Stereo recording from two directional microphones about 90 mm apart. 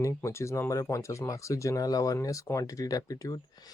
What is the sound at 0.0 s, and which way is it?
Speech, 30° left (ahead or behind).